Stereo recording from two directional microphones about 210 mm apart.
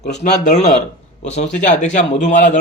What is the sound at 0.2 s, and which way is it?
A man's voice, 35° left (ahead or behind).